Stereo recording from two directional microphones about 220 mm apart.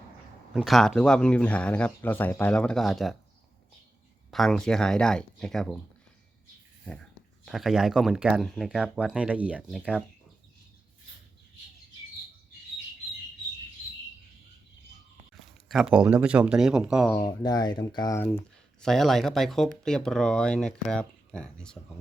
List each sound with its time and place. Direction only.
0.5 s speech: centre (ahead or behind)
4.3 s speech: centre (ahead or behind)
6.8 s speech: 5° left (ahead or behind)
15.7 s speech: 5° right (ahead or behind)
17.2 s speech: 20° left (ahead or behind)
18.8 s speech: centre (ahead or behind)